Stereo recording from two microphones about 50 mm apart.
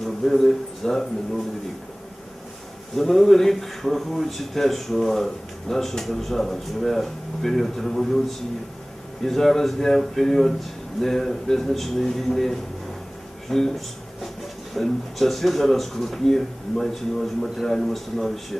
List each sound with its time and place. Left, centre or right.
0.0 s a man's voice: centre
2.9 s a man's voice: centre